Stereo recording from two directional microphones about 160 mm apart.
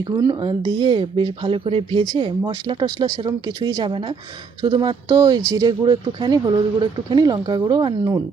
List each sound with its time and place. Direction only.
0.2 s speech: 25° right (ahead or behind)